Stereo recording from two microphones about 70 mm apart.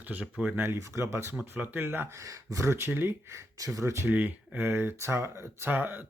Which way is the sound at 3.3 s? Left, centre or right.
Right.